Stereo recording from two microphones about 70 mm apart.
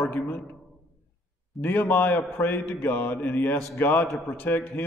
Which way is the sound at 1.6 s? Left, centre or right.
Left.